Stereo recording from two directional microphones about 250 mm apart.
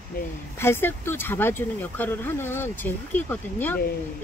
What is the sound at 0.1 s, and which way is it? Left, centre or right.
Speech, left.